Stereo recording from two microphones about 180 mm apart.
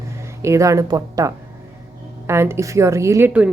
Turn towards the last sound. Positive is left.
turn(degrees=-10)  # may be behind; listen again after turning